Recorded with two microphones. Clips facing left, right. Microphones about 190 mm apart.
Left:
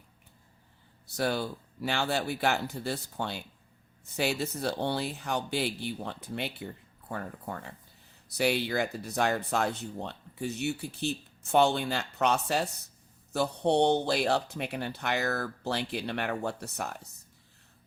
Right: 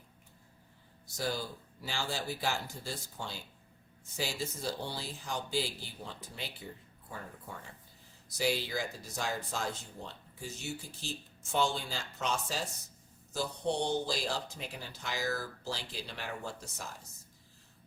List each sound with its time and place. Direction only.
1.0 s speech: 65° left (ahead or behind)